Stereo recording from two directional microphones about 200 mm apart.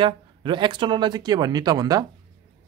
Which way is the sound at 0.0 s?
25° right (ahead or behind).